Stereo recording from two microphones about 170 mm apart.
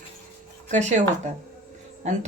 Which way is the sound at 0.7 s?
45° right (ahead or behind).